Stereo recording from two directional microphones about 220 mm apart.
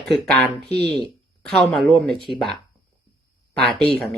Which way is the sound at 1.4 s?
5° left (ahead or behind).